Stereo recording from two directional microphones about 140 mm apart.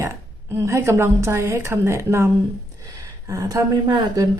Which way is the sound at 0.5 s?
20° right (ahead or behind).